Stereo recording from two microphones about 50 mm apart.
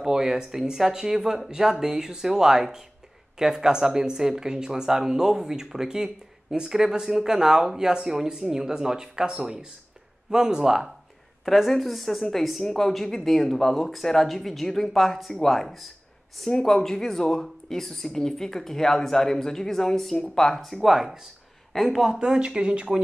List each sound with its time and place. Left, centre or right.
0.0 s speech: centre
20.6 s speech: centre
22.2 s speech: centre